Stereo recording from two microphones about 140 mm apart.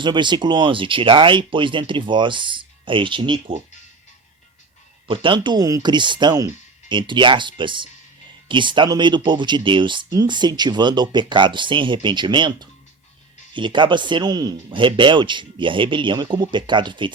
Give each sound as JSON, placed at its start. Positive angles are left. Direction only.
{"t": 0.0, "sound": "speech", "side_deg": -35}
{"t": 5.0, "sound": "speech", "side_deg": -35}